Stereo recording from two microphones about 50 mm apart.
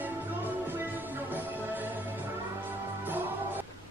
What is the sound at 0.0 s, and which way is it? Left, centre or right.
Music, right.